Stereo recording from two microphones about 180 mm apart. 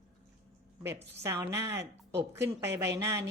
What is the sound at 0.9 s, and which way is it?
Speech, 15° right (ahead or behind).